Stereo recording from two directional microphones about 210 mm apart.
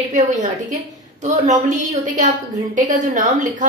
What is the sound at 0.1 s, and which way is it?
A woman's voice, 35° right (ahead or behind).